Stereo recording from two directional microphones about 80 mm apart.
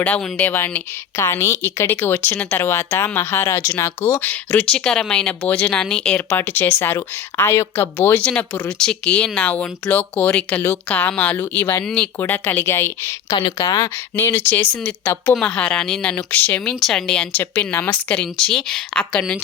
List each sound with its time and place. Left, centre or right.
0.0 s speech: centre
0.5 s speech: left
4.2 s speech: centre
6.1 s speech: left
8.2 s speech: centre
11.8 s speech: centre
12.2 s speech: left
13.6 s speech: left
14.2 s speech: left; by 19.2 s centre